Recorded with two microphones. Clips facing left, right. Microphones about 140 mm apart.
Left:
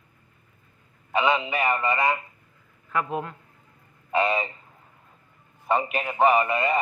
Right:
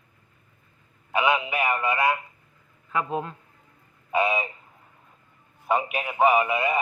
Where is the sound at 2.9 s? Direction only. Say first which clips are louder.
Even; 20° right (ahead or behind).